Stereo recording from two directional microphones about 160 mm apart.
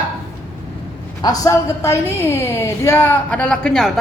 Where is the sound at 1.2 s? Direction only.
20° left (ahead or behind); by 4.0 s centre (ahead or behind).